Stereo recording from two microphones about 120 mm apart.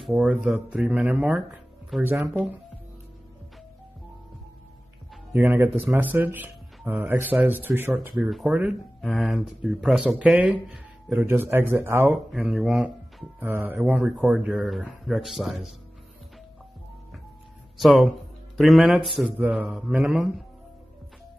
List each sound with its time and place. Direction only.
0.0 s speech: 10° right (ahead or behind)
5.3 s speech: 20° right (ahead or behind)
8.2 s speech: centre (ahead or behind)
8.5 s speech: 10° right (ahead or behind)
12.4 s speech: centre (ahead or behind)
13.4 s speech: 15° right (ahead or behind)
17.7 s speech: centre (ahead or behind)